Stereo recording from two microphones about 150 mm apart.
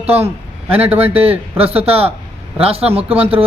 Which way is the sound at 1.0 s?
40° right (ahead or behind).